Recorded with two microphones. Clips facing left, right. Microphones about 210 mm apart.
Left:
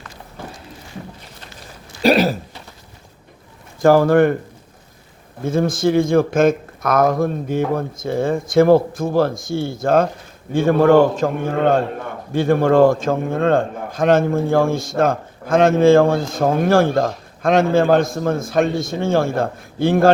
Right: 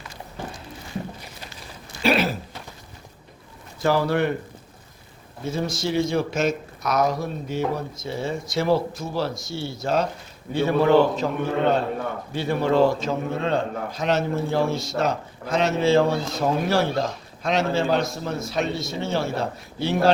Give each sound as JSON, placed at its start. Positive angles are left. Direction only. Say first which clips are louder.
{"t": 2.0, "sound": "a sound", "louder": "left 6 dB", "side_deg": 40}
{"t": 3.8, "sound": "a man's voice", "louder": "left 9 dB", "side_deg": 50}
{"t": 5.4, "sound": "a man's voice", "louder": "left 8 dB", "side_deg": 50}